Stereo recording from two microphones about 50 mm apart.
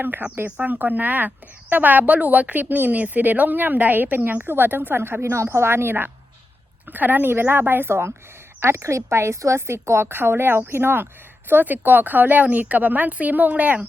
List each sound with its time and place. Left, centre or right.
0.0 s a woman's voice: right
5.5 s a woman's voice: right
6.8 s a woman's voice: right
8.6 s a woman's voice: right